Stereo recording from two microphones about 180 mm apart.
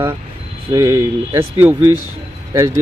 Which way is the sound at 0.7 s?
15° right (ahead or behind).